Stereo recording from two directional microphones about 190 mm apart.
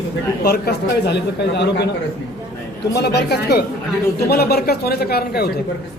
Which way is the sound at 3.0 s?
60° left (ahead or behind).